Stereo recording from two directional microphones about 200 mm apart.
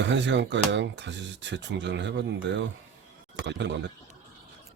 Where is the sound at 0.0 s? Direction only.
65° right (ahead or behind).